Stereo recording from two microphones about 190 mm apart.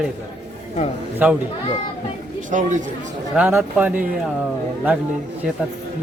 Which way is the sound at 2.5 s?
40° right (ahead or behind).